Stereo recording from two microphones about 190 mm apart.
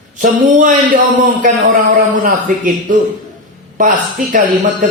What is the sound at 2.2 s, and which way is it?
A man's voice, 45° right (ahead or behind).